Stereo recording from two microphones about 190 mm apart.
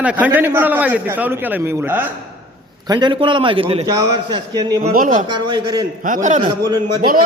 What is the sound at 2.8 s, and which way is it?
A man's voice, 20° right (ahead or behind).